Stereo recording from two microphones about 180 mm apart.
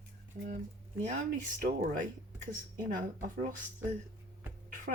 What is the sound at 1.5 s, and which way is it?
Speech, 50° right (ahead or behind).